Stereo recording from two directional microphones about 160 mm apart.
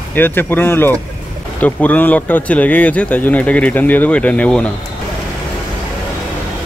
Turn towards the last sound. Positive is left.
turn(degrees=5)  # may be behind; listen again after turning